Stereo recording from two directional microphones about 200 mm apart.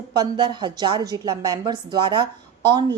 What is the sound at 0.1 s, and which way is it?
A woman's voice, 20° right (ahead or behind).